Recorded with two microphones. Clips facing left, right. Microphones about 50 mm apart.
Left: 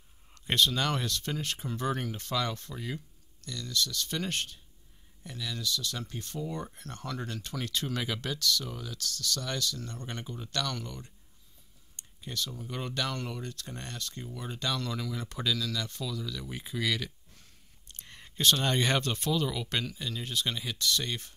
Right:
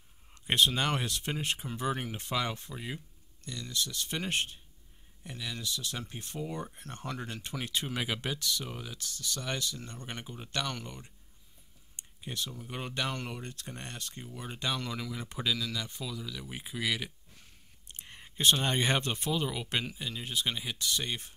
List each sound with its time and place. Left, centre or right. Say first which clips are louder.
0.3 s speech: even; centre
6.5 s speech: left 1 dB; centre
6.8 s speech: left 1 dB; right